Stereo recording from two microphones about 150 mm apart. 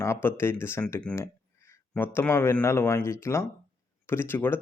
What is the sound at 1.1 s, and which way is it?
Speech, 5° left (ahead or behind).